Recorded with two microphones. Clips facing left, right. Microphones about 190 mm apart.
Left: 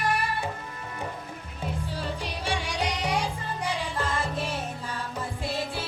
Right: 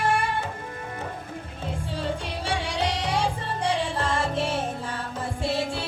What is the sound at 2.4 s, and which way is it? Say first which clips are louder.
Music: right 3 dB; 30° right (ahead or behind).